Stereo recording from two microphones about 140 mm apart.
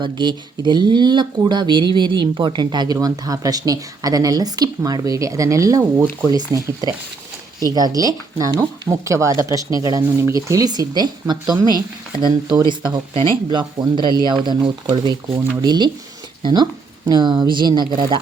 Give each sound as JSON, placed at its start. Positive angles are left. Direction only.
{"t": 0.0, "sound": "speech", "side_deg": -35}